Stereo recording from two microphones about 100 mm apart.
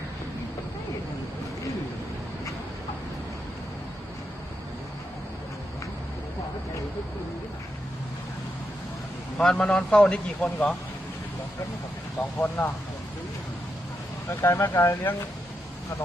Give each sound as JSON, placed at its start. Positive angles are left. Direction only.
{"t": 9.4, "sound": "a man's voice", "side_deg": 5}
{"t": 12.4, "sound": "speech", "side_deg": 20}
{"t": 14.3, "sound": "speech", "side_deg": 25}